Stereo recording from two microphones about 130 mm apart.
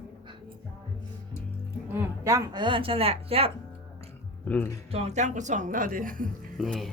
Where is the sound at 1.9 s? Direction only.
20° right (ahead or behind); by 3.5 s 50° right (ahead or behind).